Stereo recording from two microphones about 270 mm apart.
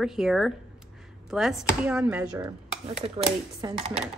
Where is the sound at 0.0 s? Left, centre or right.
Centre.